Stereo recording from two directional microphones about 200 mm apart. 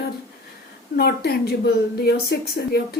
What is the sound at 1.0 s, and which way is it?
A woman's voice, 50° left (ahead or behind).